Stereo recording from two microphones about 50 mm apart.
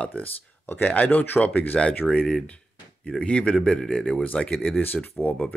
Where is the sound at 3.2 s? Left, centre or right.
Left.